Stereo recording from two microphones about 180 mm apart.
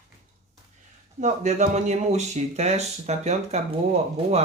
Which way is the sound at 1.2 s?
40° right (ahead or behind).